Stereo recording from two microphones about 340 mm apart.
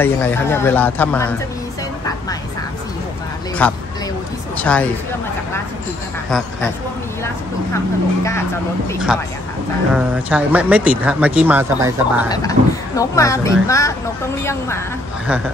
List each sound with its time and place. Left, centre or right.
0.0 s speech: centre
3.6 s speech: centre
7.7 s speech: centre
12.3 s speech: centre